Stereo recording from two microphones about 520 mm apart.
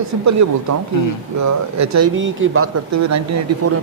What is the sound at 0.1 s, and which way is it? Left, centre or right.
Speech, right.